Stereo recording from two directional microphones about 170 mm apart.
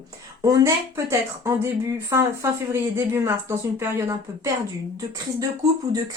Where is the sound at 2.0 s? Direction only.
15° right (ahead or behind).